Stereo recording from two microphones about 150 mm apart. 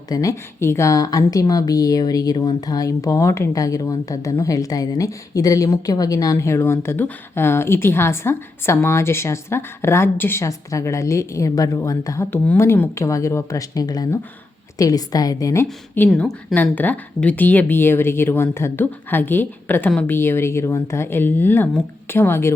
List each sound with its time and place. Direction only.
0.1 s a woman's voice: 20° left (ahead or behind)
16.0 s speech: 5° left (ahead or behind)